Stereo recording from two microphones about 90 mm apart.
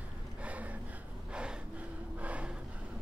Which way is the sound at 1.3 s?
10° right (ahead or behind).